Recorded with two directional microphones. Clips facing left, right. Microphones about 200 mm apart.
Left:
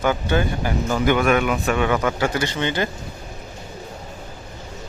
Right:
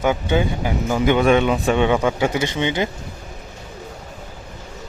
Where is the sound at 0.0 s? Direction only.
15° right (ahead or behind).